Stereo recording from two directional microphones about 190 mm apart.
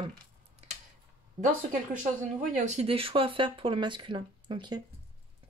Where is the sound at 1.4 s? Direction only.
40° right (ahead or behind); by 4.7 s 25° right (ahead or behind).